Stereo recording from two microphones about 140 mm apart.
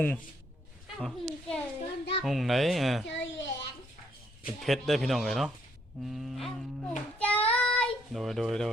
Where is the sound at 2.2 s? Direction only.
Centre (ahead or behind).